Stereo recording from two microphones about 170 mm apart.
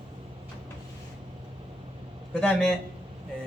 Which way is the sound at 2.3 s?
5° left (ahead or behind).